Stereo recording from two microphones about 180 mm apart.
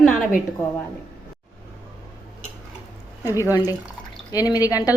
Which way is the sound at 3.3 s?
15° left (ahead or behind).